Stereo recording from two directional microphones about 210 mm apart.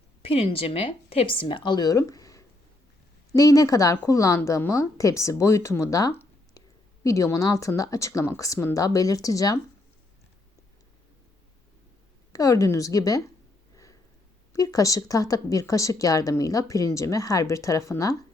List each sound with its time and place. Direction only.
0.2 s speech: 25° left (ahead or behind)
12.3 s speech: 15° left (ahead or behind)
14.5 s speech: 15° left (ahead or behind)